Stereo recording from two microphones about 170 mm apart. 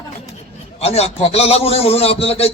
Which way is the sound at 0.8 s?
35° left (ahead or behind).